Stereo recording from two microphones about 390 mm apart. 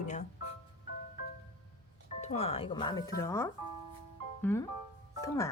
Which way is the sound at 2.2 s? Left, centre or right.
Centre.